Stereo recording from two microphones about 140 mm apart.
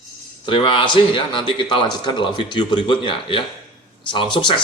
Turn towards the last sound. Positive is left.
turn(degrees=35)  # may be behind; listen again after turning